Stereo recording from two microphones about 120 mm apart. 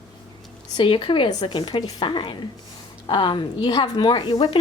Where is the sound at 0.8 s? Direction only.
45° left (ahead or behind).